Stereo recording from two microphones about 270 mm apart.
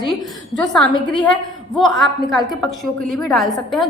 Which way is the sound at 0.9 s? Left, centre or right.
Centre.